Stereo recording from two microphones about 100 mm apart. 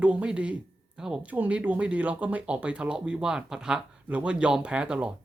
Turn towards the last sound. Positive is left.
turn(degrees=-10)  # may be behind; listen again after turning